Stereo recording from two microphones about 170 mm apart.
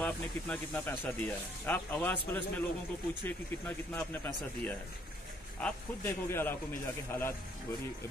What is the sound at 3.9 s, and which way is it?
Speech, 10° left (ahead or behind).